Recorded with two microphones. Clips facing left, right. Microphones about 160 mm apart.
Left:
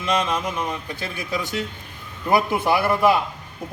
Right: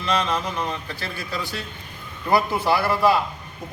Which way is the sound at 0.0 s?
20° left (ahead or behind).